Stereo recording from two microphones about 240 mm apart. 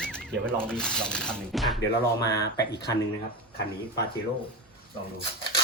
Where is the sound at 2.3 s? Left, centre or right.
Left.